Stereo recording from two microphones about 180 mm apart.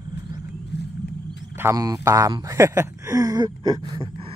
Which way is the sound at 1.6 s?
15° right (ahead or behind).